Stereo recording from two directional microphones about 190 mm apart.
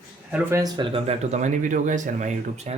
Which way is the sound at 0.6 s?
25° right (ahead or behind).